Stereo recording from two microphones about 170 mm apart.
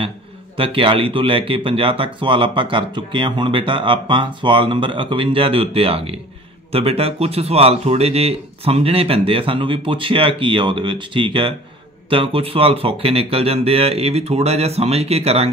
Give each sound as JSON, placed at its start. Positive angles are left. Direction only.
{"t": 0.6, "sound": "speech", "side_deg": -30}